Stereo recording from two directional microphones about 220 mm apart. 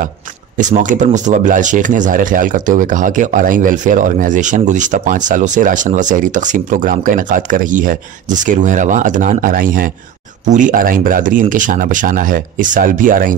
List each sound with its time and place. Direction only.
0.6 s speech: 35° right (ahead or behind)